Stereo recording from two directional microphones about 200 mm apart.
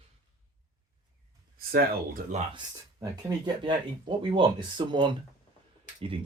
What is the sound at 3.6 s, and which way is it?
Speech, 25° right (ahead or behind).